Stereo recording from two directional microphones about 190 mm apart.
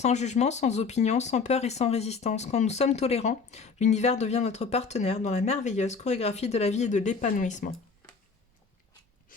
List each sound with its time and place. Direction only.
0.0 s speech: 35° left (ahead or behind)